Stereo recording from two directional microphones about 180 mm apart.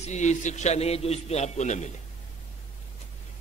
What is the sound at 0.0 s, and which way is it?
A man's voice, 40° left (ahead or behind).